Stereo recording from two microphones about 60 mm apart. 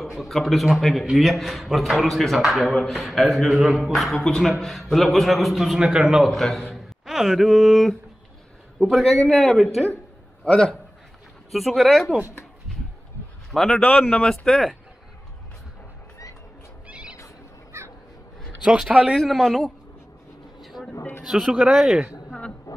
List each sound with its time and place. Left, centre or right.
0.0 s a man's voice: centre
6.3 s a man's voice: centre
10.4 s a man's voice: centre
11.5 s a man's voice: centre
13.5 s a man's voice: centre
16.8 s neigh: centre
17.7 s crow: right
18.6 s a man's voice: centre
20.6 s a sound: centre
21.3 s a man's voice: centre
22.7 s a sound: left